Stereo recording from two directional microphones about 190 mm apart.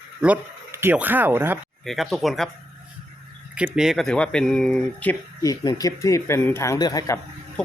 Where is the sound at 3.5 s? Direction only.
5° right (ahead or behind).